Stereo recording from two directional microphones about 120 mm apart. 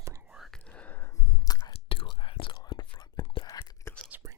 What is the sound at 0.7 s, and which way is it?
Chewing, 15° left (ahead or behind).